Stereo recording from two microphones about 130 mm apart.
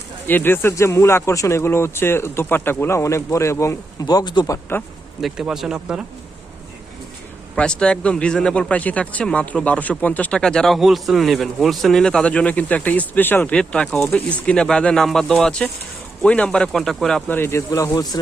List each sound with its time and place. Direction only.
0.3 s speech: 15° left (ahead or behind)
5.2 s speech: 5° right (ahead or behind)
7.5 s speech: 5° left (ahead or behind)
17.3 s speech: 20° left (ahead or behind)